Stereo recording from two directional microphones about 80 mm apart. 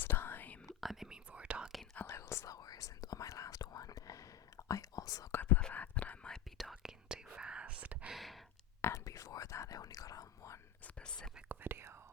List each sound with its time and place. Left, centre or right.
0.0 s whispering: left
0.8 s whispering: centre
2.0 s whispering: left
2.6 s whispering: left
5.3 s whispering: left
6.3 s whispering: centre
7.1 s whispering: centre
8.1 s a sound: centre
8.8 s whispering: left
10.8 s whispering: centre
11.4 s whispering: right